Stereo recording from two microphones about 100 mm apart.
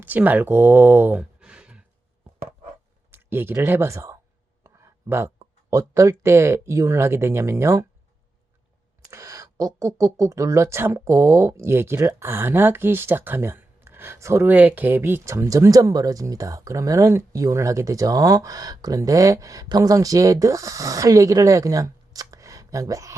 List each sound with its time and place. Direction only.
0.0 s speech: 20° right (ahead or behind)
1.2 s a sound: 10° right (ahead or behind)
3.1 s speech: 20° right (ahead or behind)
4.6 s a sound: 25° right (ahead or behind)
5.7 s speech: 30° right (ahead or behind)
9.0 s speech: 35° right (ahead or behind)